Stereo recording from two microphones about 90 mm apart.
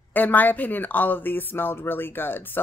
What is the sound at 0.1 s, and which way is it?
Speech, 20° left (ahead or behind).